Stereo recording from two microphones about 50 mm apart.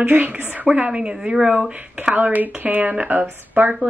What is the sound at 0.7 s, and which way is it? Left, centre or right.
Speech, right.